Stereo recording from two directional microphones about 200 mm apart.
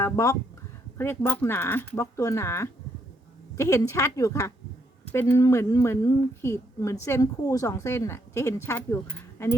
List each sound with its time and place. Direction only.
0.0 s a woman's voice: 15° left (ahead or behind)